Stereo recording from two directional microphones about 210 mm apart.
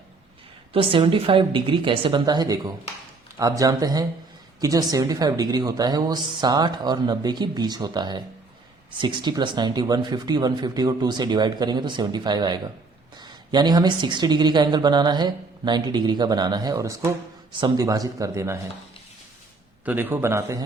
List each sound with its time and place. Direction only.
0.7 s a woman's voice: 25° right (ahead or behind)
19.8 s speech: 10° right (ahead or behind)